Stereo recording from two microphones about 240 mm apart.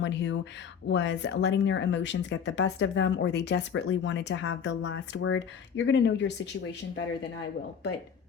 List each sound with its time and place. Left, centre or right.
0.0 s speech: left